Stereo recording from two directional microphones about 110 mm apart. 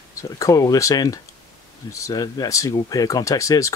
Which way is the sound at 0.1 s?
30° left (ahead or behind).